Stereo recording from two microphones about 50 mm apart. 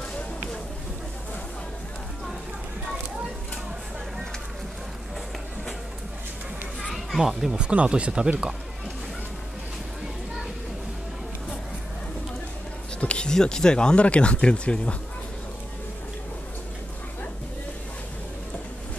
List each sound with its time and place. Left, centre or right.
7.2 s speech: centre
7.5 s speech: centre
13.0 s speech: centre